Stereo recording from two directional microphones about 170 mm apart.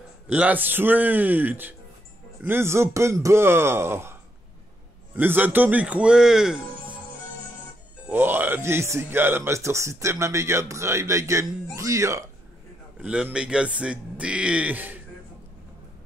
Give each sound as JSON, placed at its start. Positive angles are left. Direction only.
{"t": 0.3, "sound": "a man's voice", "side_deg": -10}
{"t": 8.1, "sound": "a man's voice", "side_deg": -10}
{"t": 13.0, "sound": "a man's voice", "side_deg": -5}